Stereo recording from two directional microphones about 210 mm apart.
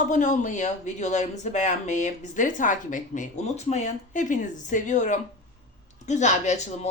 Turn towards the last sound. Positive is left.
turn(degrees=35)  # may be behind; listen again after turning